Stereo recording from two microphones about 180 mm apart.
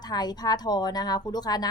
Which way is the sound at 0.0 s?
20° left (ahead or behind).